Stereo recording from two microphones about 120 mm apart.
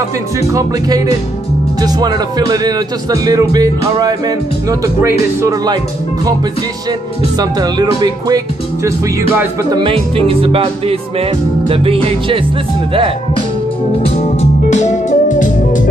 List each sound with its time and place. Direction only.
0.5 s speech: 30° right (ahead or behind)
7.3 s speech: 35° right (ahead or behind)
9.8 s music: 50° right (ahead or behind)
14.0 s music: 60° left (ahead or behind); by 15.9 s 90° left